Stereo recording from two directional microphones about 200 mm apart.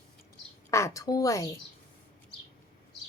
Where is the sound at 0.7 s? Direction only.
15° left (ahead or behind).